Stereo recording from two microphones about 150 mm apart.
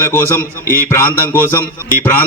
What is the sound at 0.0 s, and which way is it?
A man's voice, 15° left (ahead or behind).